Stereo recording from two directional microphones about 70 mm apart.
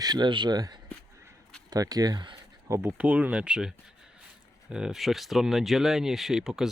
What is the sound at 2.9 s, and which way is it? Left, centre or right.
Speech, right.